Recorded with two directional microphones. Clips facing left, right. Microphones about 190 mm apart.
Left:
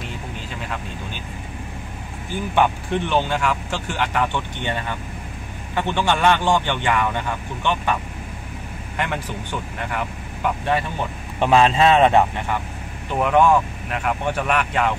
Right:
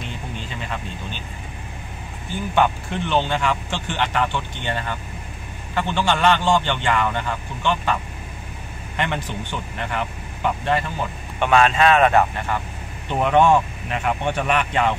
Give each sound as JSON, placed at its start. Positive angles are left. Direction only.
{"t": 2.5, "sound": "speech", "side_deg": 10}
{"t": 11.3, "sound": "speech", "side_deg": 30}
{"t": 13.1, "sound": "speech", "side_deg": 5}